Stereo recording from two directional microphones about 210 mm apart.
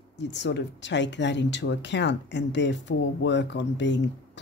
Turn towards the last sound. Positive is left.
turn(degrees=55)  # may be behind; listen again after turning